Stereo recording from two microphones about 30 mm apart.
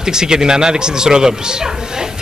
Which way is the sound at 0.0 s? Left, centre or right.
Right.